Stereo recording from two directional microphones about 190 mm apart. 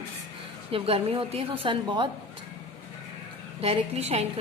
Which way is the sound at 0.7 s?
30° right (ahead or behind).